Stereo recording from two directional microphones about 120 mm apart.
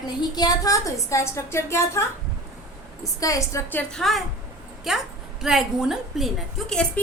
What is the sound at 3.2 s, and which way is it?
Speech, 25° left (ahead or behind).